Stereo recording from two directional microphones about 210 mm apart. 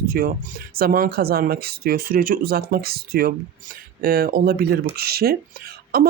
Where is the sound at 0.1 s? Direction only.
45° right (ahead or behind).